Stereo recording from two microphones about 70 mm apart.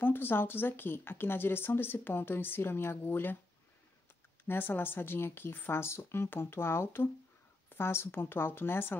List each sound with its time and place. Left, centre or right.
0.0 s speech: left
4.5 s speech: left